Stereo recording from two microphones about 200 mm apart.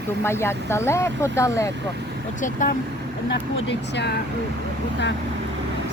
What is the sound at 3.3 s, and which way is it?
Speech, 60° left (ahead or behind).